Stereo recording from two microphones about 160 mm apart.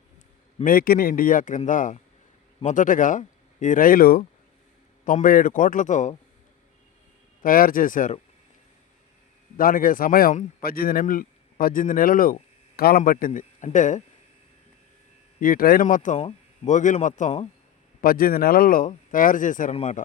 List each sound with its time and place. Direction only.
0.6 s speech: 65° left (ahead or behind)
7.4 s speech: 60° left (ahead or behind)
9.6 s a man's voice: 60° left (ahead or behind)
13.1 s a man's voice: 60° left (ahead or behind)
15.4 s speech: 60° left (ahead or behind); by 17.5 s 45° left (ahead or behind)
18.0 s speech: 65° left (ahead or behind); by 20.0 s 45° left (ahead or behind)